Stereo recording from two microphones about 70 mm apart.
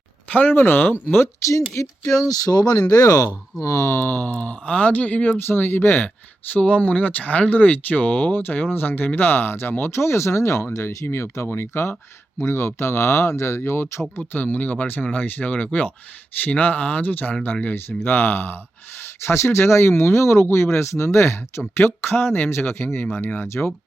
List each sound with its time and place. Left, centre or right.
0.3 s speech: left
1.7 s speech: left
2.9 s speech: left
6.5 s speech: centre; by 14.0 s left
14.2 s speech: left